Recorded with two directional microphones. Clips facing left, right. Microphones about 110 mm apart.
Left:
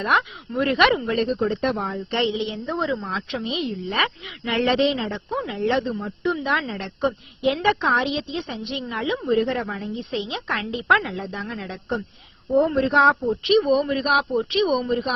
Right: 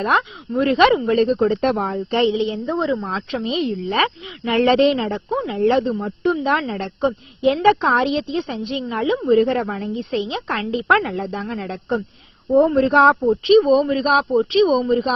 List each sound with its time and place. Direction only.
0.0 s speech: 30° right (ahead or behind)
1.4 s speech: 60° right (ahead or behind)
2.1 s a woman's voice: 35° right (ahead or behind); by 5.2 s 60° right (ahead or behind)
5.3 s speech: 30° right (ahead or behind)
5.5 s a woman's voice: 45° right (ahead or behind)
7.0 s a woman's voice: 30° right (ahead or behind); by 11.4 s 45° right (ahead or behind)
11.4 s speech: 30° right (ahead or behind)
12.7 s a woman's voice: 55° right (ahead or behind)
13.2 s speech: 30° right (ahead or behind)